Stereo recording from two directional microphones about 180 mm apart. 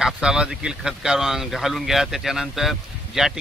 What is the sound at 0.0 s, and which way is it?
A man's voice, 5° right (ahead or behind).